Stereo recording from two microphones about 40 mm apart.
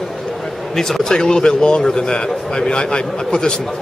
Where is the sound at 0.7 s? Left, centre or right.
Centre.